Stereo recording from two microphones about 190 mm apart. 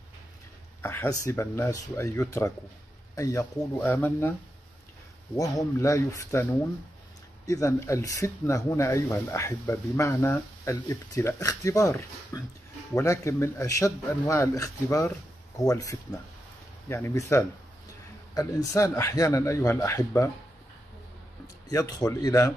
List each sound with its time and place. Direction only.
0.8 s speech: 15° left (ahead or behind)
7.4 s speech: 15° left (ahead or behind)
21.6 s speech: 20° left (ahead or behind)